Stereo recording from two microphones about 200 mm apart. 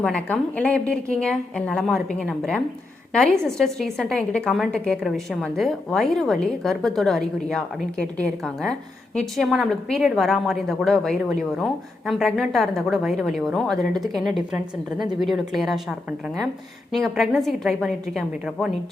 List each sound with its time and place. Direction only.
0.0 s a woman's voice: 5° left (ahead or behind)